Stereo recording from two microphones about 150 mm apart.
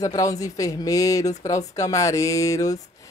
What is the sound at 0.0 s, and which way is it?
A woman's voice, 25° left (ahead or behind).